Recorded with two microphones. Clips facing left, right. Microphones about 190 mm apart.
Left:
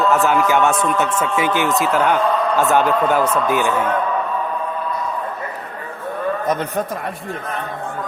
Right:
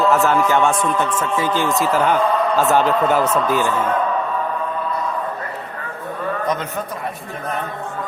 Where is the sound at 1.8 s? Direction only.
Centre (ahead or behind).